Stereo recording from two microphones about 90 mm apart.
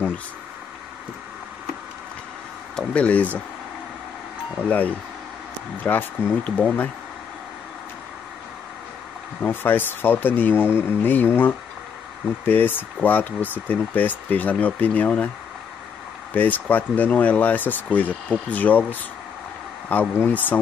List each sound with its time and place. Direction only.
2.7 s speech: 15° left (ahead or behind)
4.6 s speech: 20° left (ahead or behind)
9.4 s speech: 20° left (ahead or behind)
16.3 s speech: 20° left (ahead or behind)